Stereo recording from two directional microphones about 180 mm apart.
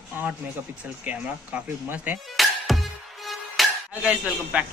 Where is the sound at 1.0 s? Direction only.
10° right (ahead or behind).